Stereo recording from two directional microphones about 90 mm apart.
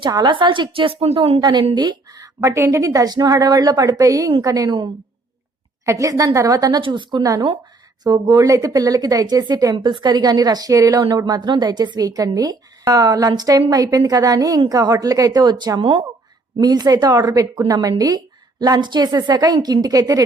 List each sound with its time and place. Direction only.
0.0 s a woman's voice: 55° right (ahead or behind); by 1.4 s 90° right
1.4 s a woman's voice: 50° right (ahead or behind)
5.8 s a woman's voice: 35° right (ahead or behind)
6.8 s a woman's voice: 60° right (ahead or behind); by 9.7 s 45° right (ahead or behind)
9.7 s a woman's voice: 55° right (ahead or behind); by 11.0 s 40° right (ahead or behind)
11.3 s a woman's voice: 55° right (ahead or behind)
16.6 s a woman's voice: 45° right (ahead or behind)